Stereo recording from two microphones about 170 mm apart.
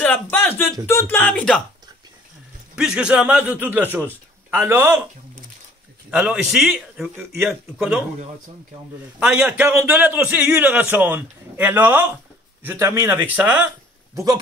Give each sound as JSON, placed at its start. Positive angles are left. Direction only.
{"t": 0.0, "sound": "a sound", "side_deg": 10}
{"t": 0.8, "sound": "speech", "side_deg": 15}
{"t": 2.7, "sound": "a man's voice", "side_deg": -5}
{"t": 6.0, "sound": "a man's voice", "side_deg": -5}
{"t": 9.2, "sound": "a man's voice", "side_deg": -5}
{"t": 14.1, "sound": "speech", "side_deg": -20}